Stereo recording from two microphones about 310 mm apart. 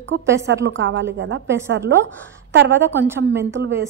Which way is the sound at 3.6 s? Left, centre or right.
Right.